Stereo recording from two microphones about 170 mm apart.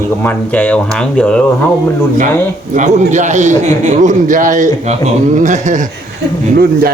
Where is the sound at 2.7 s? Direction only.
45° right (ahead or behind).